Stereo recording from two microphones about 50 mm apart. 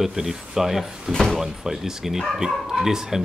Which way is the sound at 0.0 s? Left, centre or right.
Centre.